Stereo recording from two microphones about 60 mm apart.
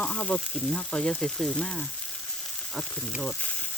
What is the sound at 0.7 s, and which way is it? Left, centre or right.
Frying, centre.